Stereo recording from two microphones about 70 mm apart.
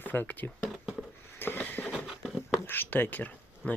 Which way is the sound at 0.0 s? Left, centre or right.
Left.